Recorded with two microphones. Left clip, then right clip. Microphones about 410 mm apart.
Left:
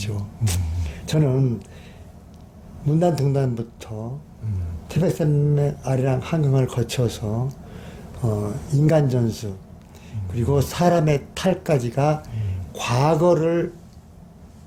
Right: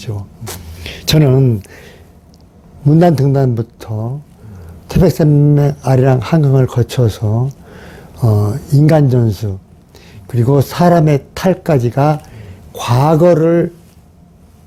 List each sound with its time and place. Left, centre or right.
0.0 s speech: right
1.0 s a sound: right
3.0 s speech: right